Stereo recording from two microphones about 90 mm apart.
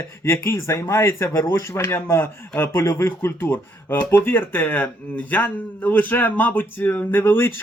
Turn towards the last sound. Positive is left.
turn(degrees=25)  # may be behind; listen again after turning